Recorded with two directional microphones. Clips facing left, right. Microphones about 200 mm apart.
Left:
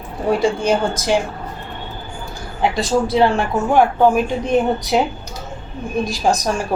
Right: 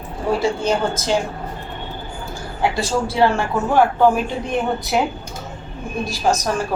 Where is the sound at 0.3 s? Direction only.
15° left (ahead or behind).